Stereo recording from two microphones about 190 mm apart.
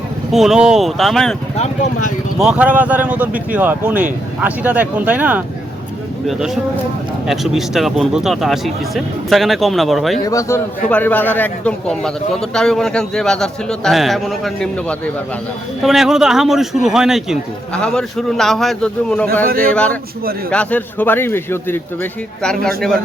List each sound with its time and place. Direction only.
0.3 s a man's voice: centre (ahead or behind)
1.5 s speech: 35° left (ahead or behind)
2.4 s a man's voice: 5° right (ahead or behind)
10.2 s a man's voice: 15° left (ahead or behind)
19.5 s speech: 50° right (ahead or behind)
19.7 s a man's voice: 5° left (ahead or behind)